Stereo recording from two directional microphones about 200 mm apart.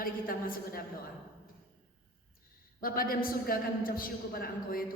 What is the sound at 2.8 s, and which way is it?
A woman's voice, 45° left (ahead or behind).